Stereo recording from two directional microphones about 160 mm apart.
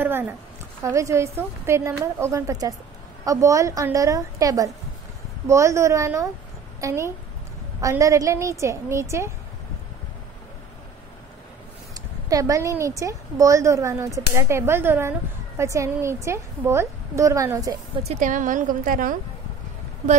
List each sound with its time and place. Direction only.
0.0 s a sound: 15° right (ahead or behind)
0.8 s a woman's voice: 20° right (ahead or behind)
11.9 s a woman's voice: 20° right (ahead or behind)
18.0 s a woman's voice: 55° right (ahead or behind)